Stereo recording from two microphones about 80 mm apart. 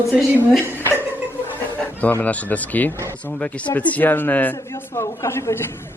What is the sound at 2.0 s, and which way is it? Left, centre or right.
A man's voice, left.